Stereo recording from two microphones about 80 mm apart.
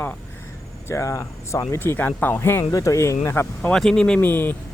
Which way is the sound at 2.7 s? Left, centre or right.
Left.